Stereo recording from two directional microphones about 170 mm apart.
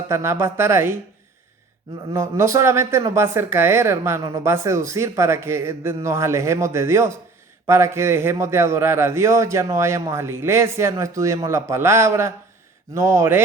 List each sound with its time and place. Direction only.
0.1 s speech: 15° right (ahead or behind)
2.1 s speech: 15° right (ahead or behind)